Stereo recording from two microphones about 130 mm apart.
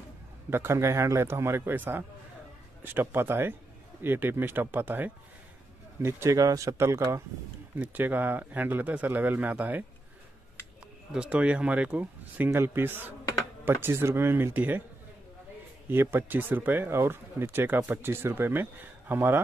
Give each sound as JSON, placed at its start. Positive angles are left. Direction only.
{"t": 0.5, "sound": "speech", "side_deg": -20}
{"t": 11.1, "sound": "speech", "side_deg": -10}
{"t": 15.9, "sound": "speech", "side_deg": -15}